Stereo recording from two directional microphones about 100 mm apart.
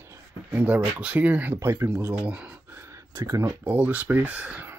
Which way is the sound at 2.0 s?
10° right (ahead or behind).